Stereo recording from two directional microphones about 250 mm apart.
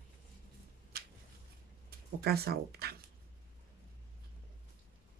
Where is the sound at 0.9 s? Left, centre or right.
Right.